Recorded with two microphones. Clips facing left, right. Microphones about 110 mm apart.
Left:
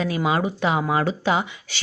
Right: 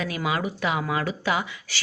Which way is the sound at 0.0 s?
30° left (ahead or behind).